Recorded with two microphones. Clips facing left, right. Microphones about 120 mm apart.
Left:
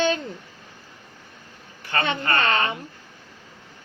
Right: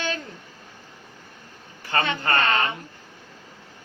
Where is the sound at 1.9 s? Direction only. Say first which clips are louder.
Right 1 dB; 30° right (ahead or behind).